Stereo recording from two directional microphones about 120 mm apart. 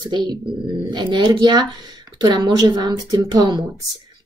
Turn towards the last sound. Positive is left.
turn(degrees=-35)  # may be behind; listen again after turning